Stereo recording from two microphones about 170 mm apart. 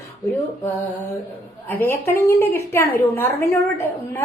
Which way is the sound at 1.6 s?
10° left (ahead or behind).